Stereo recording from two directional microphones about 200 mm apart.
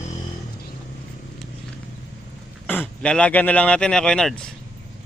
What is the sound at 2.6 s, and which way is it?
Speech, 10° left (ahead or behind).